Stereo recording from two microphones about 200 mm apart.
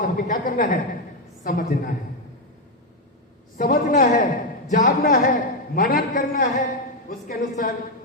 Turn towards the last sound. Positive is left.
turn(degrees=40)  # may be behind; listen again after turning